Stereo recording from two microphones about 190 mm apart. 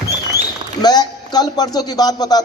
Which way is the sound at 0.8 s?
20° left (ahead or behind).